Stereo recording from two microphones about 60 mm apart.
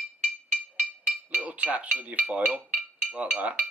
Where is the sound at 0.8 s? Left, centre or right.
Right.